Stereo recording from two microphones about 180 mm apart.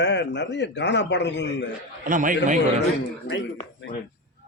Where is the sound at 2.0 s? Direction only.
45° right (ahead or behind).